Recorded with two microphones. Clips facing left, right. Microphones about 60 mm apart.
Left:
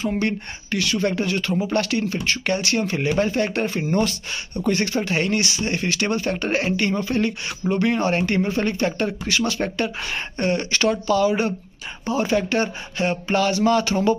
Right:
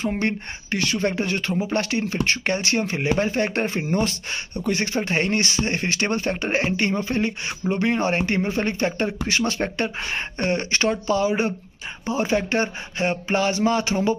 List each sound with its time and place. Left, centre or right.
0.0 s speech: right